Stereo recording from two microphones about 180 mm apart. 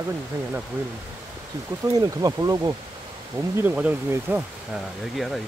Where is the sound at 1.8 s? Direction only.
20° right (ahead or behind).